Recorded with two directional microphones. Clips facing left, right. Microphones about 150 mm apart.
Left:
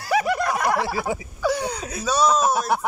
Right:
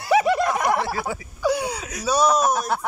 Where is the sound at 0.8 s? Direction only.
15° left (ahead or behind).